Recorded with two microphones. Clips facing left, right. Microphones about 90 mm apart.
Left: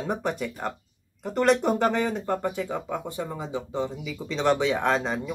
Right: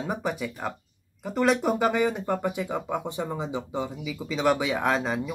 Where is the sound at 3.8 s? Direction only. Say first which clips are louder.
Left 1 dB; 5° right (ahead or behind).